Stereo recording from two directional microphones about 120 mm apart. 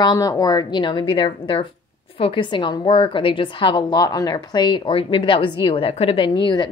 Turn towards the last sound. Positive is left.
turn(degrees=40)  # may be behind; listen again after turning